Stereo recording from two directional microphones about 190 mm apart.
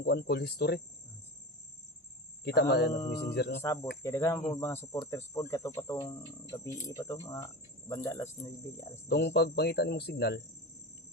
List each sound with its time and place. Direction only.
0.0 s speech: 60° left (ahead or behind)
2.4 s speech: 60° left (ahead or behind)
3.6 s speech: 15° left (ahead or behind)
9.0 s speech: 60° left (ahead or behind)